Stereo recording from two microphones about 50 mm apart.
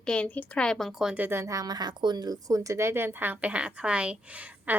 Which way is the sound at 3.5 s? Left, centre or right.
Right.